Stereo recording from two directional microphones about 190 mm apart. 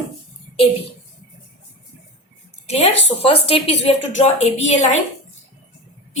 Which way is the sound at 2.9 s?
65° left (ahead or behind).